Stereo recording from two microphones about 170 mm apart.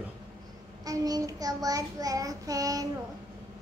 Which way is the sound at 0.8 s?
20° right (ahead or behind).